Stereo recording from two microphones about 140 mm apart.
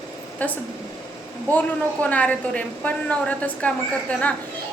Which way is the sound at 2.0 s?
10° left (ahead or behind).